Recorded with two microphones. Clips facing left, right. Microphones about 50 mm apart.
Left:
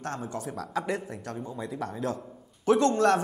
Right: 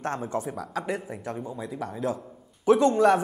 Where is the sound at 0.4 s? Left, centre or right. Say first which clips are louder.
Right 3 dB; centre.